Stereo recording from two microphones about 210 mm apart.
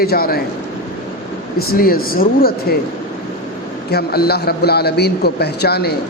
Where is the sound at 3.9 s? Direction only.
50° left (ahead or behind).